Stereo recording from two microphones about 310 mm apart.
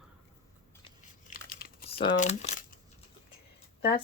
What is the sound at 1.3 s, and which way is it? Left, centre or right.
Crumpling, left.